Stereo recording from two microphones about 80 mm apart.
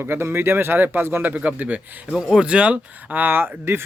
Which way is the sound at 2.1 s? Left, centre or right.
Centre.